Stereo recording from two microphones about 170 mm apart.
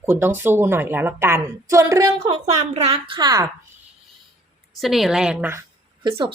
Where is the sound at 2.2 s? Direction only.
35° right (ahead or behind).